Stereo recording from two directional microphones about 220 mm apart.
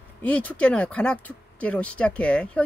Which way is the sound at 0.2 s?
5° left (ahead or behind).